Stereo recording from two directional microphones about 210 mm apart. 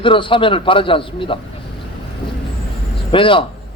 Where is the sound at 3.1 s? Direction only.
25° left (ahead or behind).